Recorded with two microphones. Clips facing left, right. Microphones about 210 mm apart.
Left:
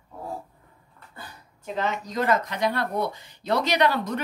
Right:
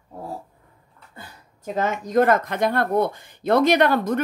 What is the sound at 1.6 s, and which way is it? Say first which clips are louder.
Speech: right 4 dB; 45° right (ahead or behind).